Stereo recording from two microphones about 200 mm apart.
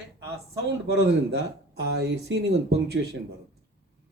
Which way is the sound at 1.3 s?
55° right (ahead or behind).